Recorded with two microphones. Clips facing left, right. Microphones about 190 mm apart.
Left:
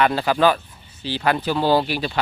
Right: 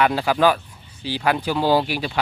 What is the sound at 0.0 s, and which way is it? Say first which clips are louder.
Speech: even; 10° right (ahead or behind).